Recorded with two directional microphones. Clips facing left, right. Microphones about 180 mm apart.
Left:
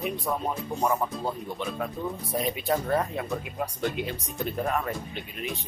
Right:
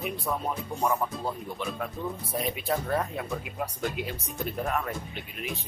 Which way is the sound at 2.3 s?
Centre (ahead or behind).